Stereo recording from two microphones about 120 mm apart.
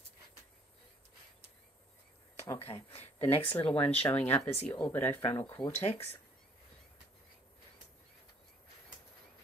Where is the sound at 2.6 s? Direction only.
55° left (ahead or behind).